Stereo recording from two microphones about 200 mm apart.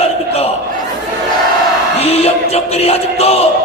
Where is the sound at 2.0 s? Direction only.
30° left (ahead or behind).